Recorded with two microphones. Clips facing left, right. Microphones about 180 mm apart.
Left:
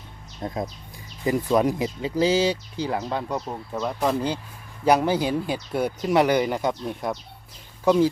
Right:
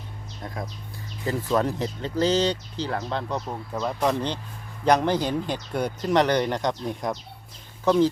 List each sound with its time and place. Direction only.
0.4 s speech: 25° left (ahead or behind); by 8.1 s 10° left (ahead or behind)